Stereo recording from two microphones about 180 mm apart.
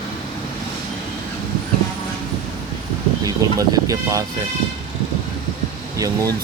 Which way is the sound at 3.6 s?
20° right (ahead or behind).